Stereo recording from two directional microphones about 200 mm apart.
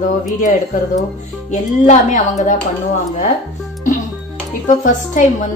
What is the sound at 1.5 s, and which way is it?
Speech, 35° left (ahead or behind).